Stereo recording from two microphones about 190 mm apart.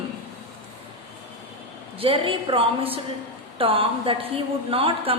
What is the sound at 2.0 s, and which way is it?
A woman's voice, 30° right (ahead or behind).